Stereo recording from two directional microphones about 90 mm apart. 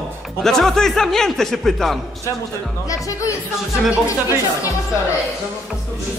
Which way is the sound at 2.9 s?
35° left (ahead or behind).